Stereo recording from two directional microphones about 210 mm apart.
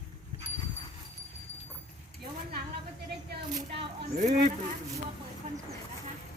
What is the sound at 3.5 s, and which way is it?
Speech, 35° right (ahead or behind).